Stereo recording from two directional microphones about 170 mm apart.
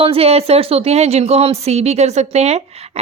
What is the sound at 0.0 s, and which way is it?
A woman's voice, 35° right (ahead or behind).